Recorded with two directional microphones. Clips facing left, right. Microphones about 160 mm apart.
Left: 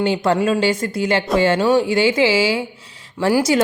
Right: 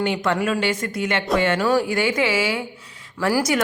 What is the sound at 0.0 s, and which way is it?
A woman's voice, 30° left (ahead or behind).